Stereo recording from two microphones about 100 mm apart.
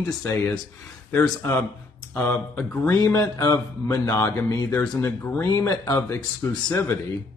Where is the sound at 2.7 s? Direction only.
20° left (ahead or behind).